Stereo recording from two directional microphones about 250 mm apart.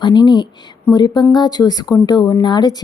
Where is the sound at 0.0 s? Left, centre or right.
Centre.